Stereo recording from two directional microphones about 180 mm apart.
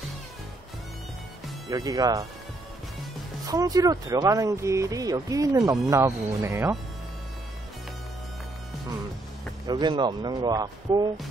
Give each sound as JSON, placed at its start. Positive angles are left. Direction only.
{"t": 1.7, "sound": "speech", "side_deg": -20}
{"t": 3.4, "sound": "speech", "side_deg": -20}
{"t": 9.7, "sound": "speech", "side_deg": -25}